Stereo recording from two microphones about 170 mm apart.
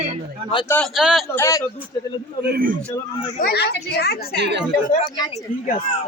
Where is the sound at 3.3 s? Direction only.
70° left (ahead or behind).